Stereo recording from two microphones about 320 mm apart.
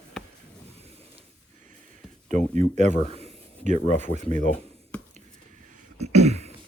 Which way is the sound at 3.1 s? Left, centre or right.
Centre.